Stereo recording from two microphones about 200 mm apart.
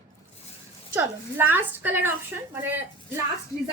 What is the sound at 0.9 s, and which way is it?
A woman's voice, 10° right (ahead or behind).